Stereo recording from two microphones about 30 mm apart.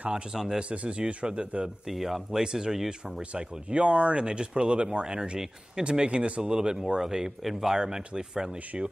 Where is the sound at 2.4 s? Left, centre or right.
Right.